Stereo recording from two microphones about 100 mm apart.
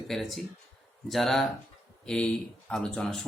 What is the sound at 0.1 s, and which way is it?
Speech, centre (ahead or behind).